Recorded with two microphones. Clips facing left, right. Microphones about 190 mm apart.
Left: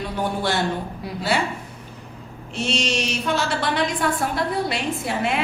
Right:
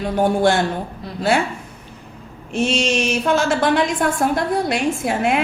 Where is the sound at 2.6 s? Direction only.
50° right (ahead or behind).